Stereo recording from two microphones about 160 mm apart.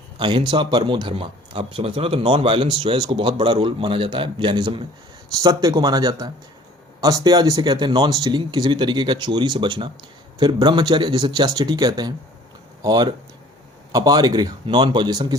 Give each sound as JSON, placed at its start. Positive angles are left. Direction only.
{"t": 0.2, "sound": "speech", "side_deg": -30}